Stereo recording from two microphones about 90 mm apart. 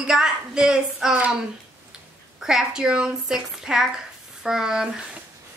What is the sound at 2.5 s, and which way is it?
A woman's voice, 10° right (ahead or behind).